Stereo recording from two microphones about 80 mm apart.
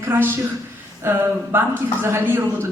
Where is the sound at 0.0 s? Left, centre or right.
Right.